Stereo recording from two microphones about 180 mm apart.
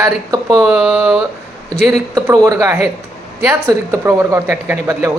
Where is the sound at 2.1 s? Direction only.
20° right (ahead or behind).